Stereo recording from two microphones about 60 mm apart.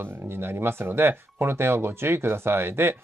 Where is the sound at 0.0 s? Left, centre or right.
Right.